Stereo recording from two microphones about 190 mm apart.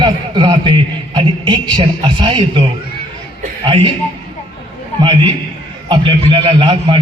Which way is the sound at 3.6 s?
30° right (ahead or behind).